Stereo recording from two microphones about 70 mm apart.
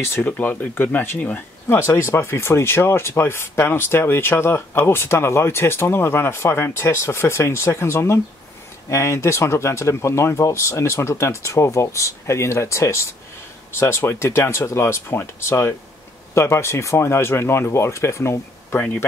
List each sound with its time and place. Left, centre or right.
0.2 s speech: left
1.7 s speech: left